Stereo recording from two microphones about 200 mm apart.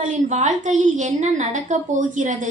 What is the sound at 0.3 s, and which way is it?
A woman's voice, 35° right (ahead or behind).